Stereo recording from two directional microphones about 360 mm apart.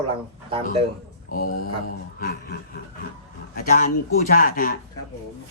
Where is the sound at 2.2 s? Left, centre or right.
Left.